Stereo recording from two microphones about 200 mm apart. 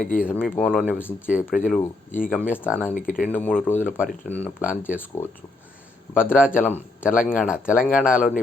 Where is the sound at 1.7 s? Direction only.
10° left (ahead or behind).